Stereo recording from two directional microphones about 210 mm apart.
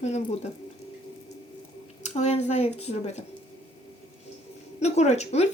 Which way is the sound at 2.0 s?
30° left (ahead or behind).